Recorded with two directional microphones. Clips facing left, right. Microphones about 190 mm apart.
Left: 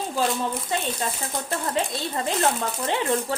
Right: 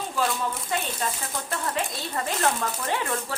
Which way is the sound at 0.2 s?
30° left (ahead or behind).